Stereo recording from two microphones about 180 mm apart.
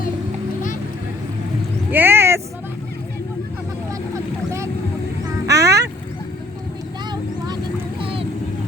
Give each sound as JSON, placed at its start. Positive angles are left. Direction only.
{"t": 1.9, "sound": "vehicle", "side_deg": -10}
{"t": 5.5, "sound": "a sound", "side_deg": -15}
{"t": 7.1, "sound": "vehicle", "side_deg": -25}